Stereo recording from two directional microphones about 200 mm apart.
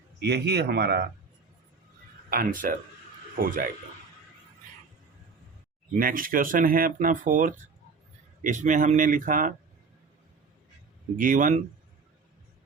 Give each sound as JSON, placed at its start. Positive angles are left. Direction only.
{"t": 0.2, "sound": "speech", "side_deg": -55}
{"t": 2.3, "sound": "speech", "side_deg": -45}
{"t": 5.9, "sound": "speech", "side_deg": -45}
{"t": 11.2, "sound": "speech", "side_deg": -40}